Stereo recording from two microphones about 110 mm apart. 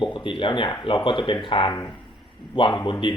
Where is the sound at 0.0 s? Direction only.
50° left (ahead or behind).